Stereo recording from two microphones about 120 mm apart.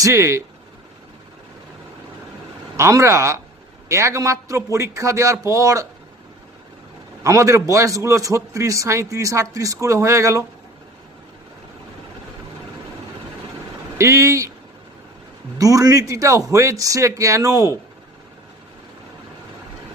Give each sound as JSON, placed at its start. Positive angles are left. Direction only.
{"t": 0.0, "sound": "a man's voice", "side_deg": -25}
{"t": 2.7, "sound": "a man's voice", "side_deg": -25}
{"t": 7.2, "sound": "a man's voice", "side_deg": -25}
{"t": 14.0, "sound": "a man's voice", "side_deg": -25}
{"t": 15.5, "sound": "a man's voice", "side_deg": -30}